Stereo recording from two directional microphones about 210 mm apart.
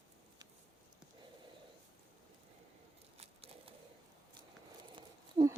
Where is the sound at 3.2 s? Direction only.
25° right (ahead or behind).